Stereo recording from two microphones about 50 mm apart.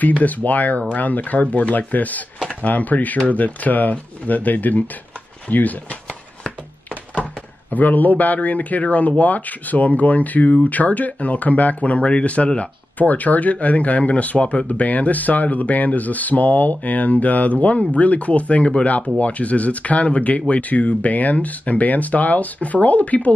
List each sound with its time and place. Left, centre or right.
0.0 s speech: left
7.7 s speech: left